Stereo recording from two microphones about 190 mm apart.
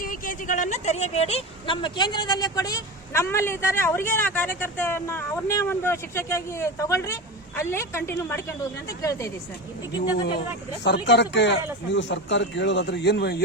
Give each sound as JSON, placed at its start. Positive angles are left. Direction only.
{"t": 0.0, "sound": "a woman's voice", "side_deg": 45}
{"t": 10.8, "sound": "a man's voice", "side_deg": 65}